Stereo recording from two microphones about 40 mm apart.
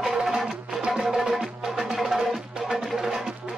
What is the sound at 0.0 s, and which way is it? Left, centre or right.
Music, centre.